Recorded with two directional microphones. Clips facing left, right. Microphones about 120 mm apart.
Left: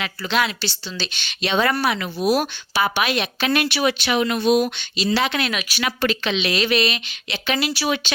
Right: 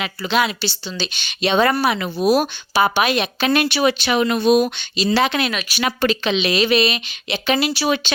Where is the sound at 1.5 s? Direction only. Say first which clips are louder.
Right 3 dB; 40° right (ahead or behind).